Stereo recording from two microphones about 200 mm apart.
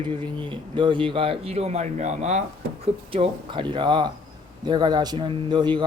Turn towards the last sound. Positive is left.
turn(degrees=-20)  # may be behind; listen again after turning